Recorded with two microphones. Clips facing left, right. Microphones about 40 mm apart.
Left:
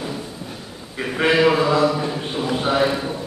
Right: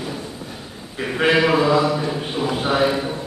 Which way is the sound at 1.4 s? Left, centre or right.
Centre.